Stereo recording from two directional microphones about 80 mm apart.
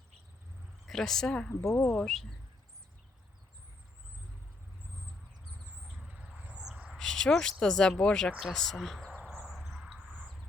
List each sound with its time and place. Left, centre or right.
0.9 s speech: centre
1.5 s speech: left
1.9 s speech: centre
5.9 s insect: centre
6.9 s a sound: centre
7.6 s speech: centre
9.0 s cricket: centre
9.5 s cricket: centre